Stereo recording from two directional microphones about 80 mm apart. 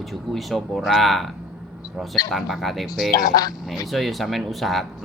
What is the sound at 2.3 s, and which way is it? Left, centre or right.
Speech, centre.